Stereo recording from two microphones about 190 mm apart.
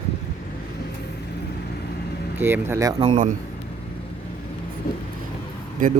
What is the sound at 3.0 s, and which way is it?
Speech, 40° right (ahead or behind).